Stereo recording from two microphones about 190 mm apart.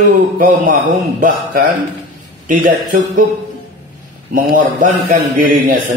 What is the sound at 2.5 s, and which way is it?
Speech, 45° right (ahead or behind).